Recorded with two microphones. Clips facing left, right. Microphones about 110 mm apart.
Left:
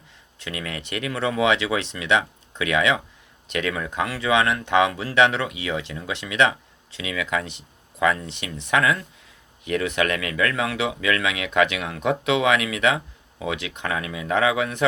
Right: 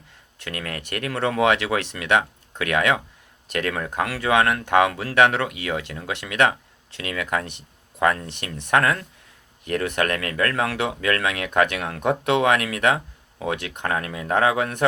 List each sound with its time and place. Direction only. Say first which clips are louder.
0.3 s speech: even; 50° right (ahead or behind)